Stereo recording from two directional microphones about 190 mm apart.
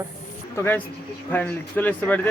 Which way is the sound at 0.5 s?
10° left (ahead or behind).